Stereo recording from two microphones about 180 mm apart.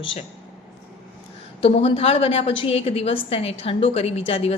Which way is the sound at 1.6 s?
30° left (ahead or behind).